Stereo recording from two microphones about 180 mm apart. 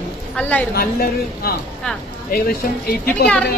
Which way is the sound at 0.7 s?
60° left (ahead or behind).